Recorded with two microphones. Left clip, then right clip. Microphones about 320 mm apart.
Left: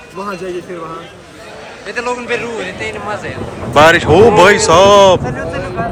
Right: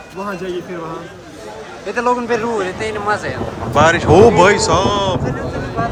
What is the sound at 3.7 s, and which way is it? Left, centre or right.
Speech, centre.